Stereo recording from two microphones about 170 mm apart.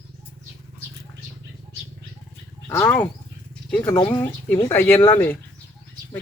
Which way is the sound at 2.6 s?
15° left (ahead or behind).